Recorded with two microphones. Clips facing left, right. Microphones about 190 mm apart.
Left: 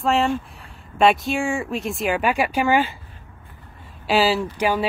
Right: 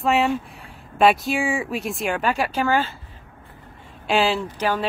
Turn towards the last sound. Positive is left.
turn(degrees=10)  # may be behind; listen again after turning